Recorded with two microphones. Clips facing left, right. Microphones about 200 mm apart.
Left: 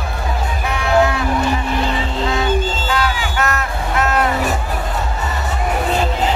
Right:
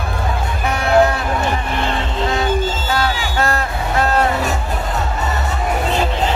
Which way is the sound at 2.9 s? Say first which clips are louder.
Even; 35° right (ahead or behind).